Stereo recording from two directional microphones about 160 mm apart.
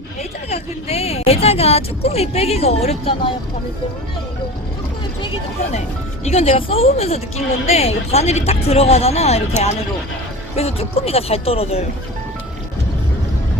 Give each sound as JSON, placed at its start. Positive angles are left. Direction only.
{"t": 0.5, "sound": "speech", "side_deg": 40}
{"t": 6.2, "sound": "speech", "side_deg": 40}